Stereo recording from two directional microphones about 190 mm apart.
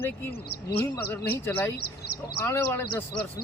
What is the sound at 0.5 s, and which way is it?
Speech, 55° left (ahead or behind).